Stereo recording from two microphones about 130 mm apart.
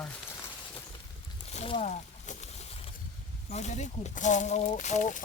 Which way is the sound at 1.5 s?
45° left (ahead or behind).